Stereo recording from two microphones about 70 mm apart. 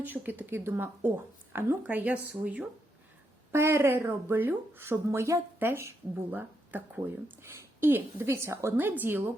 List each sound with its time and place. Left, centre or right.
0.0 s a woman's voice: right
3.5 s a woman's voice: right
8.7 s a woman's voice: right